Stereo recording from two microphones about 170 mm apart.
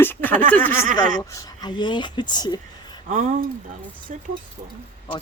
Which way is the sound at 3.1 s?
50° right (ahead or behind).